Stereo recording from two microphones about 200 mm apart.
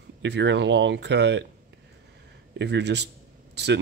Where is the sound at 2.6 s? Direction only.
60° right (ahead or behind).